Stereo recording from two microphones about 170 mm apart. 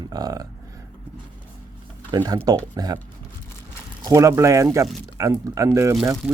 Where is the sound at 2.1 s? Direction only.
25° right (ahead or behind).